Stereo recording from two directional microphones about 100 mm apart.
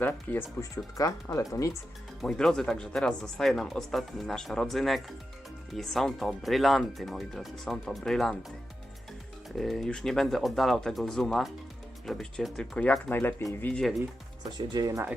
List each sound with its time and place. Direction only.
0.0 s speech: 20° left (ahead or behind)
0.9 s speech: 35° left (ahead or behind)
2.2 s speech: 5° left (ahead or behind)
9.6 s speech: 5° left (ahead or behind)
12.8 s speech: 15° left (ahead or behind)
14.6 s speech: 45° right (ahead or behind)